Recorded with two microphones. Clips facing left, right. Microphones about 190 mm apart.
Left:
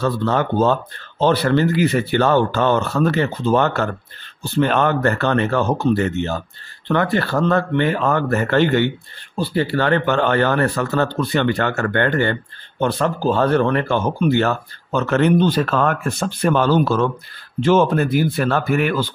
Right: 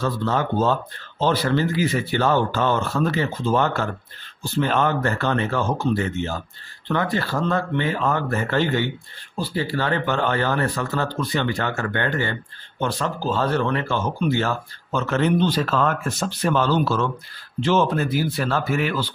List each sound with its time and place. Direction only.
0.0 s speech: 65° left (ahead or behind)